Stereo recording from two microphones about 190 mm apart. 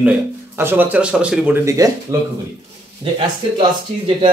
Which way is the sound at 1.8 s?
20° right (ahead or behind).